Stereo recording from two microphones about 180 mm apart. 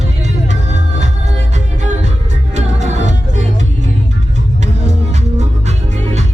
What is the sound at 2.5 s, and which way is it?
Music, 40° right (ahead or behind).